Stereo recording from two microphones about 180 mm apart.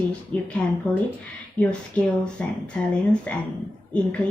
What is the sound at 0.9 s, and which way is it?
Speech, 5° left (ahead or behind).